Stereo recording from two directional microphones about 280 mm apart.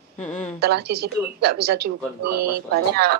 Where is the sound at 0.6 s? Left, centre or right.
Right.